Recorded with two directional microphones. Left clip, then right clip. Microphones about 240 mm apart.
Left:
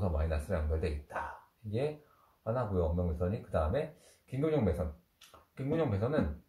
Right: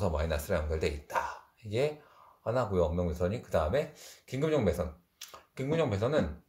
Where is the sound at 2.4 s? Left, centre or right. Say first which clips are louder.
Right 4 dB; right.